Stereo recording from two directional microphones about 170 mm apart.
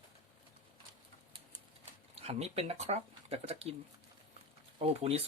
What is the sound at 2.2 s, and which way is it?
Speech, 35° right (ahead or behind).